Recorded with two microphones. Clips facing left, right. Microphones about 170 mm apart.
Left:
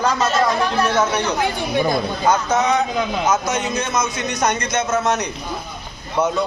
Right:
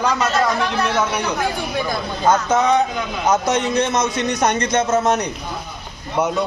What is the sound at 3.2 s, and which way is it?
A man's voice, 35° right (ahead or behind).